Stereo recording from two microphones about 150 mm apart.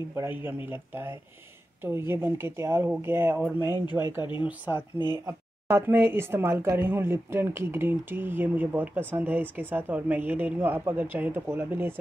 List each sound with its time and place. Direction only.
0.1 s speech: 15° right (ahead or behind)
3.6 s speech: 25° left (ahead or behind)
4.5 s speech: 10° right (ahead or behind)